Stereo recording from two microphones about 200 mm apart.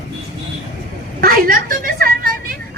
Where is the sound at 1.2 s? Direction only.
45° right (ahead or behind).